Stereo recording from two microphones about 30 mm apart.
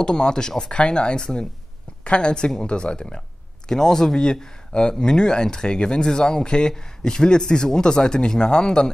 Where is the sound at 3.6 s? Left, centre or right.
Centre.